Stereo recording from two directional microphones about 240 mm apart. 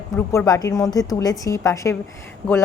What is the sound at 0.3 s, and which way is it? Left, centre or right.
A woman's voice, centre.